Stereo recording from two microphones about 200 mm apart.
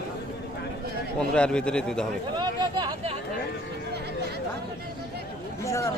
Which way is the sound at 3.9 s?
55° right (ahead or behind).